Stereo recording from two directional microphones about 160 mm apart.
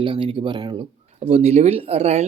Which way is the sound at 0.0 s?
35° right (ahead or behind).